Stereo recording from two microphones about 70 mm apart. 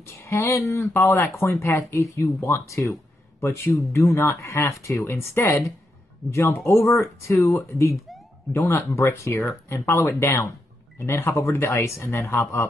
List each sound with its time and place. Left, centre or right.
0.0 s speech: left
10.0 s speech: left
11.8 s speech: left